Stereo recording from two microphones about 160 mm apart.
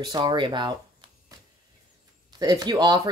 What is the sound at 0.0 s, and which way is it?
Speech, 25° right (ahead or behind).